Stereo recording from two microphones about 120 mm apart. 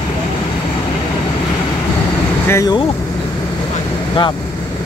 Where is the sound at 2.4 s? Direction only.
25° left (ahead or behind).